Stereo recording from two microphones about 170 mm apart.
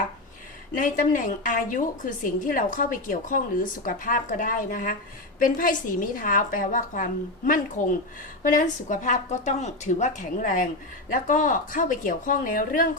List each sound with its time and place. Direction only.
0.8 s a woman's voice: 50° left (ahead or behind)